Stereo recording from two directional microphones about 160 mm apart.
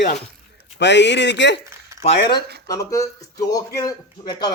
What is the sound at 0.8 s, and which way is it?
Speech, 90° left.